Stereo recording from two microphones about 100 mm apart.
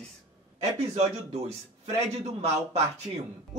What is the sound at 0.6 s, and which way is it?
Speech, 90° right.